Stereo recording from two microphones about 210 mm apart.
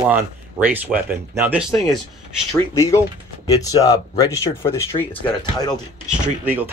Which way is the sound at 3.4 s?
15° left (ahead or behind).